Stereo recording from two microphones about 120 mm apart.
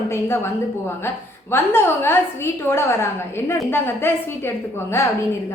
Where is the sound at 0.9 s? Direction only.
20° left (ahead or behind).